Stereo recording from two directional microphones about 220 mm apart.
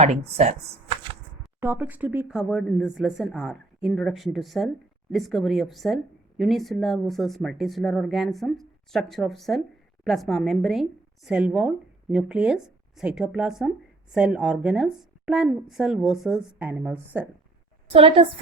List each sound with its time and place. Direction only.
0.0 s speech: 30° right (ahead or behind)
1.6 s speech: 10° right (ahead or behind)
17.9 s a woman's voice: 25° right (ahead or behind)